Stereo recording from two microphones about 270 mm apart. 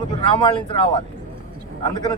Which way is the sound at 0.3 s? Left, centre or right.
Centre.